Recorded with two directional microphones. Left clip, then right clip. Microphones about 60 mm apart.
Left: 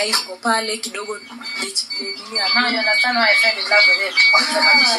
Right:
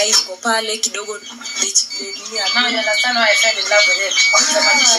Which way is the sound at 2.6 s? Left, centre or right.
Centre.